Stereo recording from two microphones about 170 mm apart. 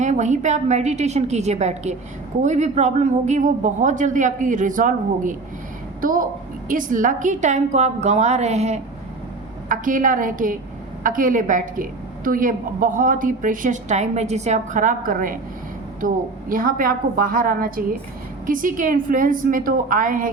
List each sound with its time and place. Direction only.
0.0 s a woman's voice: 45° right (ahead or behind)